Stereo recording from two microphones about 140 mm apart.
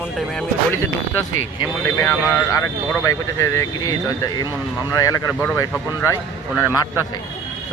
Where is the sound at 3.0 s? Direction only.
20° left (ahead or behind).